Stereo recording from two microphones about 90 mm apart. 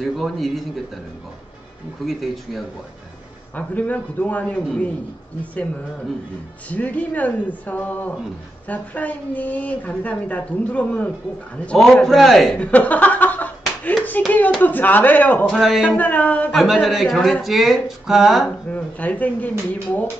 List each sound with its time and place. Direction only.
0.0 s speech: centre (ahead or behind)
2.0 s speech: centre (ahead or behind)
3.5 s speech: 20° left (ahead or behind)
6.7 s speech: 15° left (ahead or behind)
11.8 s speech: centre (ahead or behind)
12.5 s a sound: 15° left (ahead or behind)
14.2 s speech: 20° left (ahead or behind)
15.4 s speech: centre (ahead or behind)
16.0 s speech: 15° left (ahead or behind)
16.5 s speech: centre (ahead or behind)
18.7 s speech: 15° left (ahead or behind)